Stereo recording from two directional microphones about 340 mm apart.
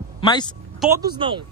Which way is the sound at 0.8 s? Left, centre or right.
Centre.